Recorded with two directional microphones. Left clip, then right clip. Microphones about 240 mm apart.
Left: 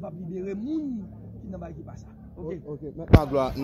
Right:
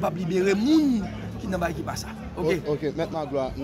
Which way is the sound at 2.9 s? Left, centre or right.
Left.